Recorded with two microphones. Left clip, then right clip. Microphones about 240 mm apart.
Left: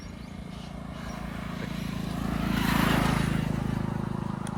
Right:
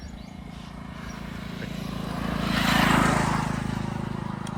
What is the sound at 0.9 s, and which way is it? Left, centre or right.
Vehicle, centre.